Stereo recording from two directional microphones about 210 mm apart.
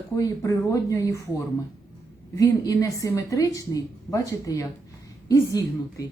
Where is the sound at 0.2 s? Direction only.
15° left (ahead or behind).